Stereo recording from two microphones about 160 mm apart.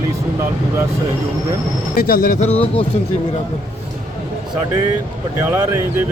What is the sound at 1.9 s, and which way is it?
Speech, 65° left (ahead or behind).